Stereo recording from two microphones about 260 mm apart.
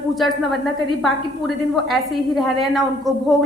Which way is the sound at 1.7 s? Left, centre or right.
Centre.